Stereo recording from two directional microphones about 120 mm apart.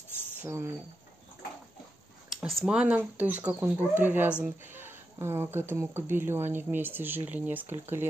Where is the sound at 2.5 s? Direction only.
5° right (ahead or behind).